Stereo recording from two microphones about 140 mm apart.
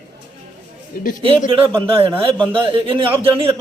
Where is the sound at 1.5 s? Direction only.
40° right (ahead or behind).